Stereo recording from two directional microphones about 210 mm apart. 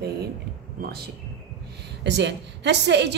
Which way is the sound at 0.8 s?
45° right (ahead or behind).